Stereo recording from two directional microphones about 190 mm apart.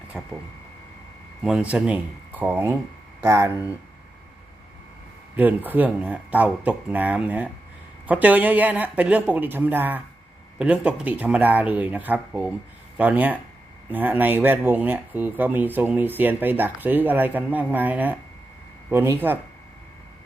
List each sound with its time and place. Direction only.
0.1 s speech: 5° right (ahead or behind)
1.4 s speech: 5° right (ahead or behind)
5.4 s speech: 10° right (ahead or behind)